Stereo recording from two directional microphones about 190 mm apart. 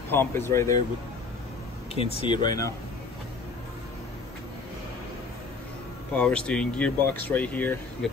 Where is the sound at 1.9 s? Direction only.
30° left (ahead or behind).